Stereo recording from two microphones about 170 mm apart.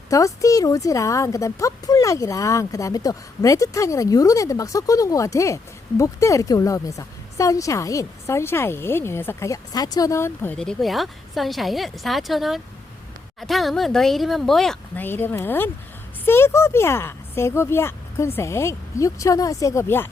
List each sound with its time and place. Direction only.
0.1 s a woman's voice: 20° left (ahead or behind)